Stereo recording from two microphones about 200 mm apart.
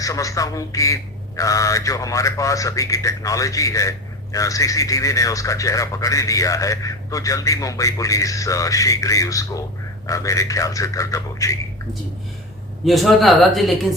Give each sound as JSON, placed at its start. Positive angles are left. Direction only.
{"t": 0.0, "sound": "speech", "side_deg": 15}
{"t": 12.8, "sound": "speech", "side_deg": 0}